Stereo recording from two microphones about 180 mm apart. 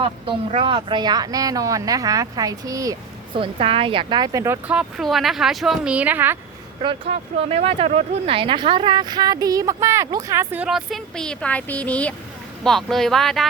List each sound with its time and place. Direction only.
0.0 s speech: 30° right (ahead or behind); by 6.3 s 10° right (ahead or behind)
6.8 s speech: 35° right (ahead or behind); by 13.5 s centre (ahead or behind)